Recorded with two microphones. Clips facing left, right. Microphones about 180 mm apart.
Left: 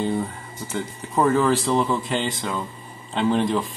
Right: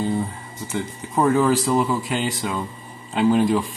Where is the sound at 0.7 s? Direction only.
5° right (ahead or behind).